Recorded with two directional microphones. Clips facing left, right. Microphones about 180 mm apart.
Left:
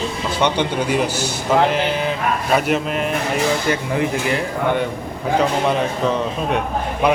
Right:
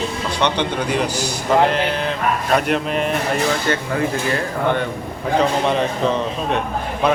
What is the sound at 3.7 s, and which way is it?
A man's voice, 15° left (ahead or behind).